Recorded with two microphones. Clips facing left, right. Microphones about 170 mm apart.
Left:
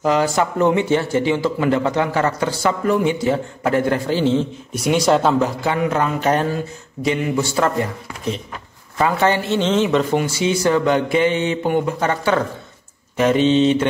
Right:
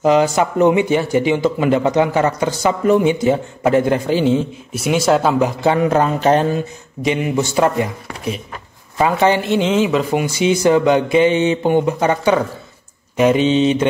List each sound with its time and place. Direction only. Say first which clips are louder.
0.0 s a man's voice: right 4 dB; 20° right (ahead or behind); by 5.3 s 5° right (ahead or behind)
5.6 s a man's voice: right 5 dB; 30° right (ahead or behind); by 10.0 s 5° right (ahead or behind)
10.1 s speech: right 2 dB; 20° right (ahead or behind)